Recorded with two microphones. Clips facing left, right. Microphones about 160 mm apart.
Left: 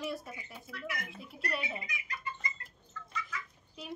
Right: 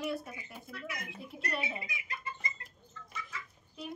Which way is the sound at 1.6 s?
25° right (ahead or behind).